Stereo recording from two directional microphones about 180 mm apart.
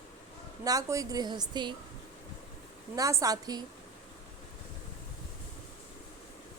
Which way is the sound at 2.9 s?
20° right (ahead or behind).